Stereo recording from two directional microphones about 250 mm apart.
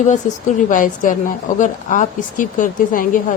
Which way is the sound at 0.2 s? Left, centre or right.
Left.